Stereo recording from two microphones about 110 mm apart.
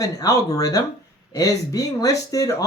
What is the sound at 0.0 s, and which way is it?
Speech, 30° left (ahead or behind).